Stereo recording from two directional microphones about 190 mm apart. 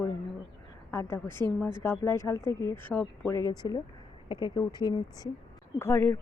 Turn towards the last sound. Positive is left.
turn(degrees=15)  # may be behind; listen again after turning